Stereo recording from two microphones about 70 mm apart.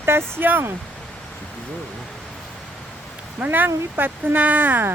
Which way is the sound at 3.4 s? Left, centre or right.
Right.